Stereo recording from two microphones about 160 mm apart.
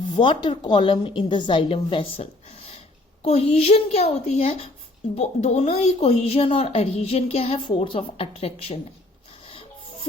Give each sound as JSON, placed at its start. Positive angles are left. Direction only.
{"t": 0.0, "sound": "a woman's voice", "side_deg": 30}
{"t": 9.5, "sound": "music", "side_deg": 35}